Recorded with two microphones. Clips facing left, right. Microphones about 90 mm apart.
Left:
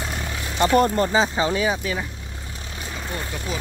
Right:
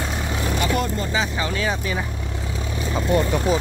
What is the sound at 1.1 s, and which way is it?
Speech, 30° left (ahead or behind).